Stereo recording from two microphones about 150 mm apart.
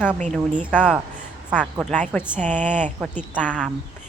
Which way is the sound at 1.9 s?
10° left (ahead or behind).